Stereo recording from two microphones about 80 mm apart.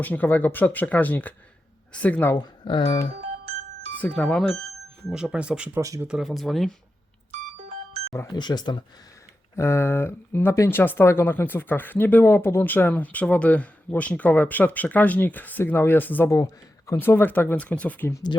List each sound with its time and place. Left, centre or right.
0.0 s speech: left
2.3 s speech: left
3.9 s speech: centre
5.1 s speech: centre
6.2 s speech: centre
8.3 s speech: left
9.6 s speech: left
16.3 s speech: left
17.0 s speech: left
18.3 s speech: left